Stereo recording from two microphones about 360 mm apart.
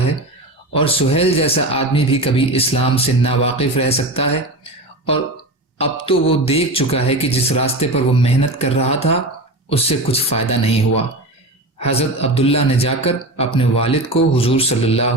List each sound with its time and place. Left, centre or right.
0.7 s speech: centre